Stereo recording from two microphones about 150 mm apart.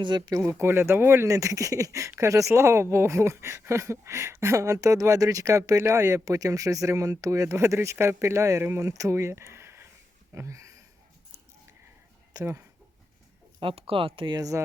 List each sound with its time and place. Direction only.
0.0 s speech: 25° right (ahead or behind)
0.6 s speech: 15° right (ahead or behind)
10.3 s a sound: 20° right (ahead or behind)
12.3 s speech: 20° right (ahead or behind)
13.6 s speech: 40° right (ahead or behind)